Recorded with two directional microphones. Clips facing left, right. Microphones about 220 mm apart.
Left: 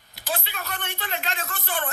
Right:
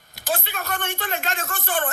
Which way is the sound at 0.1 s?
45° right (ahead or behind).